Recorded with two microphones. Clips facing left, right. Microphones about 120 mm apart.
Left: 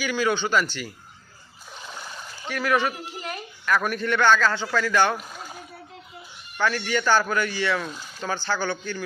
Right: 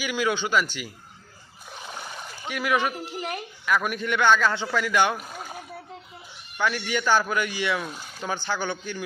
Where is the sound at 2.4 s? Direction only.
10° right (ahead or behind).